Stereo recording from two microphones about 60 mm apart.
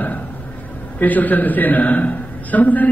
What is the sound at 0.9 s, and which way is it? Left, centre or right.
A man's voice, left.